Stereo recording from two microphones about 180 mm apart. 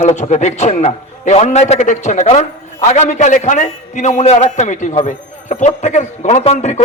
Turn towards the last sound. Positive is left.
turn(degrees=40)  # may be behind; listen again after turning